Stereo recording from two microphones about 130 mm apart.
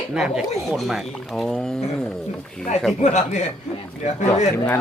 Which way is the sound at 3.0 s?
65° left (ahead or behind).